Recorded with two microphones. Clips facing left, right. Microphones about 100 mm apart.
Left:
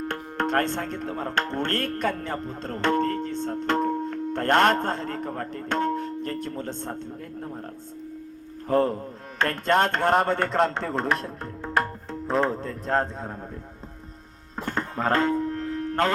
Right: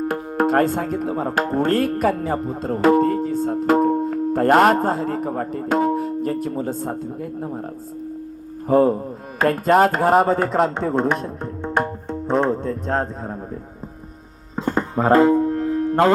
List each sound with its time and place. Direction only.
0.1 s speech: 5° right (ahead or behind)
8.6 s mantra: 5° right (ahead or behind)
14.6 s music: 15° right (ahead or behind)